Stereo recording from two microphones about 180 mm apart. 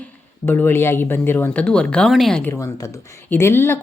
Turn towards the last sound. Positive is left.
turn(degrees=15)  # may be behind; listen again after turning